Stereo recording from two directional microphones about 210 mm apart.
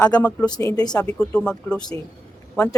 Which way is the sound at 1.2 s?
5° left (ahead or behind).